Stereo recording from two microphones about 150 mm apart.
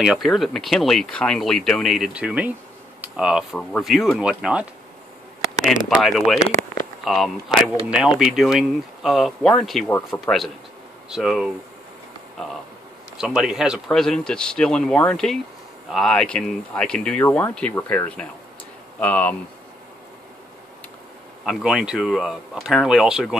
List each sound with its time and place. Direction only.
0.0 s speech: 5° right (ahead or behind)
6.0 s speech: centre (ahead or behind)
9.8 s speech: 15° left (ahead or behind)
10.2 s speech: centre (ahead or behind)
13.2 s speech: 5° right (ahead or behind)
21.5 s speech: 5° right (ahead or behind)